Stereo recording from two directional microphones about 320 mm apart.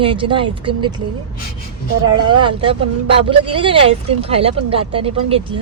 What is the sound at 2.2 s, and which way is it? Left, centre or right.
Speech, centre.